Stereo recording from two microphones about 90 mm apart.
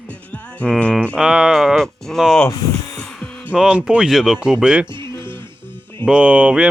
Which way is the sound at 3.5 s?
10° right (ahead or behind).